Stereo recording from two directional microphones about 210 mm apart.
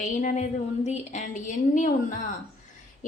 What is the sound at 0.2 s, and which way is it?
A woman's voice, 35° left (ahead or behind).